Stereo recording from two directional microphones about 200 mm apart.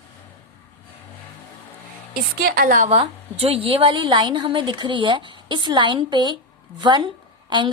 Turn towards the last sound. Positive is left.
turn(degrees=-25)  # may be behind; listen again after turning